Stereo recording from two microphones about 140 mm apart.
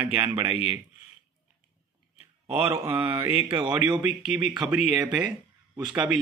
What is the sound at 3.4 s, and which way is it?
Speech, 35° right (ahead or behind).